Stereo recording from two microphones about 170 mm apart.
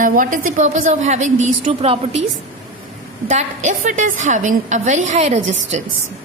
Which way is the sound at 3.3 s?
45° right (ahead or behind).